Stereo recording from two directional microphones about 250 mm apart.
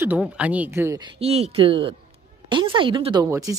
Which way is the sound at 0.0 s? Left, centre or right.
Centre.